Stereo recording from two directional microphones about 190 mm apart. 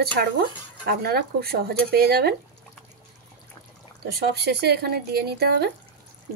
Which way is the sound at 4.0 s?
55° right (ahead or behind).